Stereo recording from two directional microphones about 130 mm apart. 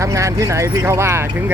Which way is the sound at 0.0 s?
25° right (ahead or behind).